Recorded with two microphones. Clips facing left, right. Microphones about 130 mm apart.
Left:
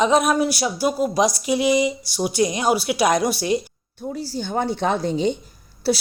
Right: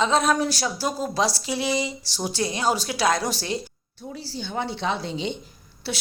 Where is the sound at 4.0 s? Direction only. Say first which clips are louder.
Left 7 dB; 45° left (ahead or behind).